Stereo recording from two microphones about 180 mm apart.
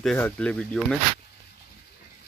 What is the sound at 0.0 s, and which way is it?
Speech, 5° left (ahead or behind).